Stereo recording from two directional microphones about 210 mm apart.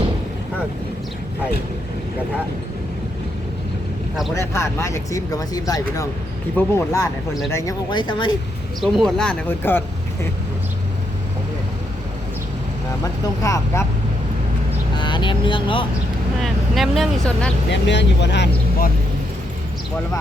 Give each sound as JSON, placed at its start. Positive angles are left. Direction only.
{"t": 4.4, "sound": "speech", "side_deg": 15}
{"t": 8.8, "sound": "speech", "side_deg": 0}
{"t": 13.4, "sound": "speech", "side_deg": 15}
{"t": 14.9, "sound": "speech", "side_deg": 20}
{"t": 16.4, "sound": "speech", "side_deg": 0}
{"t": 17.7, "sound": "speech", "side_deg": 55}